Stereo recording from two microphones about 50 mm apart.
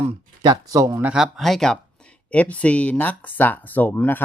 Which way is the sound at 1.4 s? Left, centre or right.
Centre.